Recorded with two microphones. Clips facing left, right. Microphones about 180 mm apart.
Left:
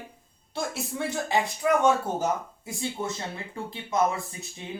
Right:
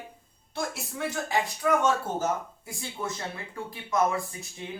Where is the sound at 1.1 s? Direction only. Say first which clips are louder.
Left 2 dB; 20° left (ahead or behind).